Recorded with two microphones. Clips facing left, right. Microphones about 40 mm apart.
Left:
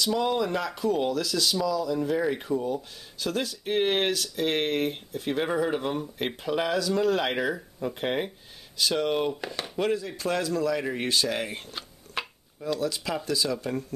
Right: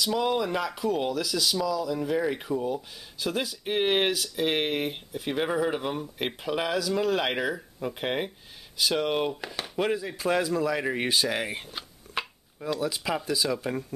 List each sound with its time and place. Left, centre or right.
0.0 s speech: centre